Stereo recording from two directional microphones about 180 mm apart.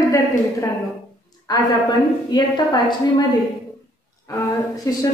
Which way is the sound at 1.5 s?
25° left (ahead or behind).